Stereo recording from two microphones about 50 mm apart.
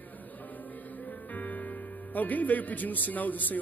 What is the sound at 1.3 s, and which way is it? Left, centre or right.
Speech, left.